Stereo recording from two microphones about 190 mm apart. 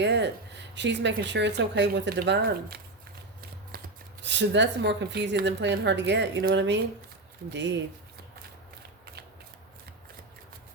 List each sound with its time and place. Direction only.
0.0 s speech: 70° right (ahead or behind)
3.7 s shuffling cards: 50° right (ahead or behind)
4.2 s speech: 65° right (ahead or behind)